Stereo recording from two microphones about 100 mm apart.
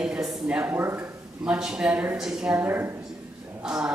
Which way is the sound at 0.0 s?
10° right (ahead or behind).